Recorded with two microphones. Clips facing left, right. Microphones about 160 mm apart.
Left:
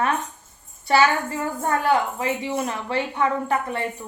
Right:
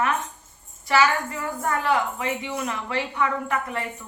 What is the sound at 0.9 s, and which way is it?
A woman's voice, 30° left (ahead or behind).